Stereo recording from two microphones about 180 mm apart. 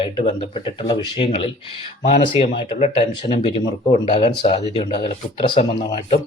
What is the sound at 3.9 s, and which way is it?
A man's voice, 30° left (ahead or behind).